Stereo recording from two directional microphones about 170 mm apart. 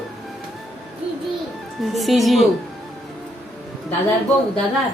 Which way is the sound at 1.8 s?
Centre (ahead or behind).